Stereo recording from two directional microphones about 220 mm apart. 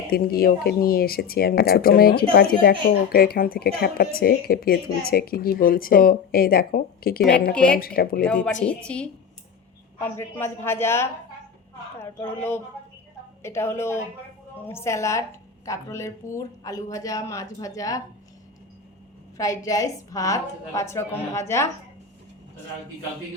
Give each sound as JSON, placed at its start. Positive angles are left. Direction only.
{"t": 0.1, "sound": "a woman's voice", "side_deg": 45}
{"t": 7.5, "sound": "speech", "side_deg": 5}
{"t": 7.8, "sound": "a woman's voice", "side_deg": 40}
{"t": 8.6, "sound": "speech", "side_deg": 5}
{"t": 19.4, "sound": "speech", "side_deg": 15}